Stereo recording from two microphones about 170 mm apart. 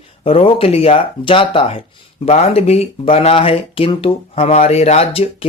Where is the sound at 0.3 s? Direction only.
35° left (ahead or behind).